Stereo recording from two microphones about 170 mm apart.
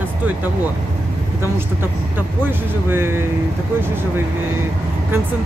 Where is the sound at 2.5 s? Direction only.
15° right (ahead or behind).